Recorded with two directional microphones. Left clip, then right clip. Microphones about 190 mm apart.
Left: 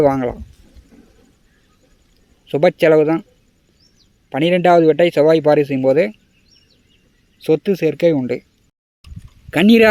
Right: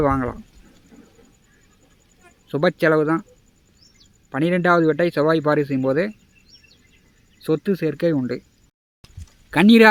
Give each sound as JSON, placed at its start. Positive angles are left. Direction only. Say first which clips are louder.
{"t": 0.0, "sound": "speech", "louder": "left 5 dB", "side_deg": 20}
{"t": 2.5, "sound": "speech", "louder": "left 6 dB", "side_deg": 15}
{"t": 4.3, "sound": "speech", "louder": "left 5 dB", "side_deg": 15}
{"t": 7.3, "sound": "speech", "louder": "left 6 dB", "side_deg": 15}
{"t": 9.5, "sound": "speech", "louder": "left 1 dB", "side_deg": 10}